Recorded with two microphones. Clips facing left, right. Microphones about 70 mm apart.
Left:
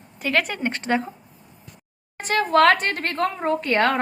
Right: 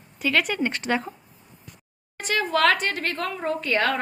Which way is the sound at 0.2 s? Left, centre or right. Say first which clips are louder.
Even; left.